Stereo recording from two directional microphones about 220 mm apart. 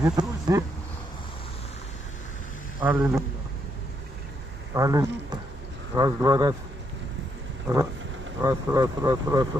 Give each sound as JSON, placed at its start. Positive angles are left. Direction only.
{"t": 0.0, "sound": "speech", "side_deg": -15}
{"t": 2.8, "sound": "speech", "side_deg": -5}
{"t": 4.7, "sound": "speech", "side_deg": -15}
{"t": 8.4, "sound": "speech", "side_deg": -15}